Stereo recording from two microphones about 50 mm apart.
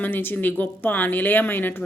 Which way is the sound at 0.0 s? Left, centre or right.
Left.